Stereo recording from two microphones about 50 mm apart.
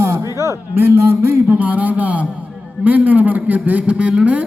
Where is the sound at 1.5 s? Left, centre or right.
Right.